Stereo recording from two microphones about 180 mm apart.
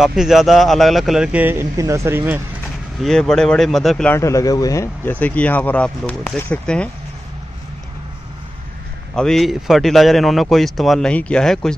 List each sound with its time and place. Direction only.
0.0 s a man's voice: centre (ahead or behind)
3.0 s a man's voice: centre (ahead or behind)
9.1 s a man's voice: 5° left (ahead or behind)